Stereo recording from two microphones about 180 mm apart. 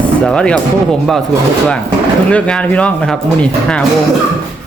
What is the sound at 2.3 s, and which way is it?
Speech, 5° left (ahead or behind).